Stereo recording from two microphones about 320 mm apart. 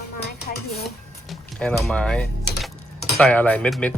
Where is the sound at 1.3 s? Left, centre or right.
Centre.